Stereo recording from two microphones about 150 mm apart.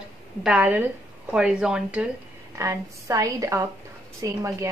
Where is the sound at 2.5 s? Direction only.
20° right (ahead or behind).